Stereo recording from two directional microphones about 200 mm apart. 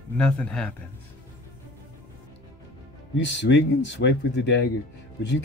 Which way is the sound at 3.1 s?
60° left (ahead or behind).